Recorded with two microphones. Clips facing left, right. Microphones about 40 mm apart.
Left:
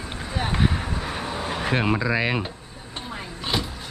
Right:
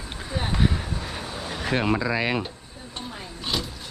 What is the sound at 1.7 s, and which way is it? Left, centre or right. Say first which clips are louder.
Speech: even; centre.